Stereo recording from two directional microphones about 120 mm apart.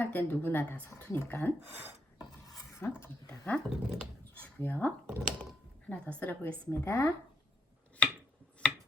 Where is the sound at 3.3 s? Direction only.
10° left (ahead or behind).